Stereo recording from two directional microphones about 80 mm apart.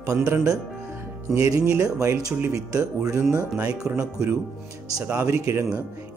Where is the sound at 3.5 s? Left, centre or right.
Centre.